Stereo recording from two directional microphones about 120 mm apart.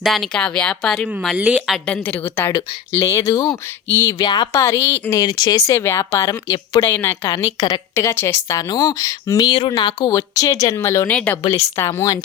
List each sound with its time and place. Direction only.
0.0 s speech: centre (ahead or behind)
1.4 s a woman's voice: 10° right (ahead or behind)
1.9 s speech: 15° left (ahead or behind)
4.2 s speech: 35° left (ahead or behind)
4.6 s speech: 25° left (ahead or behind)
5.1 s speech: 35° left (ahead or behind)
6.8 s speech: 20° left (ahead or behind)
7.9 s speech: 20° left (ahead or behind)
11.1 s speech: 10° left (ahead or behind)
11.5 s speech: 25° left (ahead or behind)